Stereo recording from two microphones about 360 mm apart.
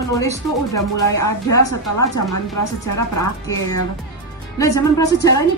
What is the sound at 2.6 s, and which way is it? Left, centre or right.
Speech, left.